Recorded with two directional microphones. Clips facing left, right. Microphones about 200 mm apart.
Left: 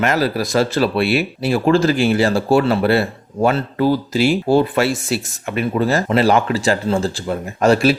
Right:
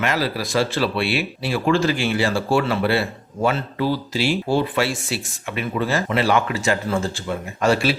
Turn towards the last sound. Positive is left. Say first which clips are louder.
# left 5 dB
turn(degrees=40)  # may be behind; listen again after turning